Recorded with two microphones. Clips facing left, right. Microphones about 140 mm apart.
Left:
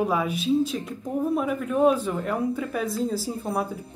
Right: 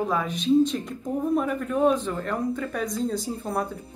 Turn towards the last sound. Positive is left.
turn(degrees=5)  # may be behind; listen again after turning